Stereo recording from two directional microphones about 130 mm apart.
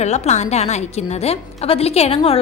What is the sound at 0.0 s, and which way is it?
A woman's voice, 60° left (ahead or behind).